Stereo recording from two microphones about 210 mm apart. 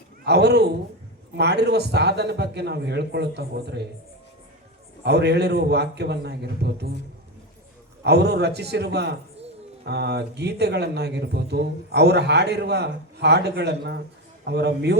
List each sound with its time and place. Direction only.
0.3 s speech: 50° right (ahead or behind)
5.0 s speech: 50° right (ahead or behind)
8.0 s speech: 50° right (ahead or behind)